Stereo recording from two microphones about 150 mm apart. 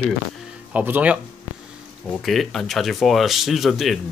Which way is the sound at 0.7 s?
10° right (ahead or behind).